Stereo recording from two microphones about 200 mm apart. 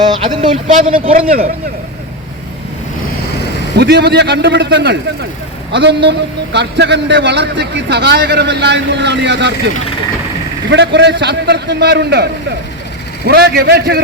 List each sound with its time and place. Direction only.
0.0 s a man's voice: 20° right (ahead or behind)
3.8 s a man's voice: 55° right (ahead or behind)